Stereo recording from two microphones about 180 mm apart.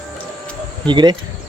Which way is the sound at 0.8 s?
25° right (ahead or behind).